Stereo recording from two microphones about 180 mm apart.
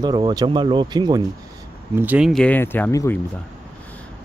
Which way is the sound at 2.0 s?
5° right (ahead or behind).